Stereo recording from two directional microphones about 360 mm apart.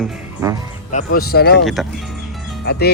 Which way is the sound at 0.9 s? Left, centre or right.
Left.